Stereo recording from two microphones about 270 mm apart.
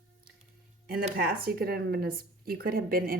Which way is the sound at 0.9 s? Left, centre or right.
Right.